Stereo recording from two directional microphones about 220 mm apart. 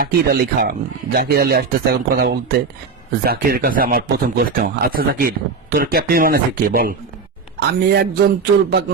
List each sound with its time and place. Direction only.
0.0 s speech: 45° right (ahead or behind)